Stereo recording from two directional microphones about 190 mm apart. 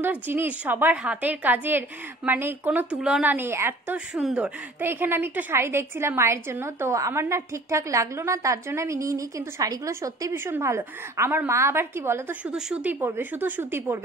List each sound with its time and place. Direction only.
0.0 s a woman's voice: 10° right (ahead or behind)